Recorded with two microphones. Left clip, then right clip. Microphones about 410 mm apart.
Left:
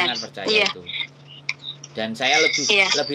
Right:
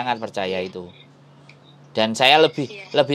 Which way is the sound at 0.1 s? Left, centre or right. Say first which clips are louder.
Right 5 dB; right.